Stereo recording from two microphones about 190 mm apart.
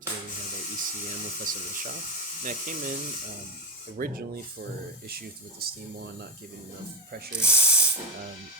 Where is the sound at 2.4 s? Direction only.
45° right (ahead or behind).